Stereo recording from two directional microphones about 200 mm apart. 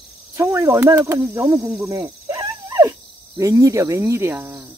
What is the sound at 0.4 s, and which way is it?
Speech, 15° right (ahead or behind).